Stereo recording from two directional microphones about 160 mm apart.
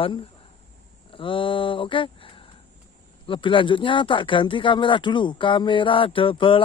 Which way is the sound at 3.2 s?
30° left (ahead or behind).